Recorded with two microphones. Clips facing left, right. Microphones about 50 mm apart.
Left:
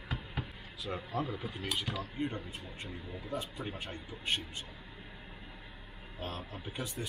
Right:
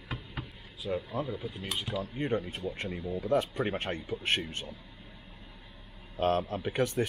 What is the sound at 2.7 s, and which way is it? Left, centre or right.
Speech, right.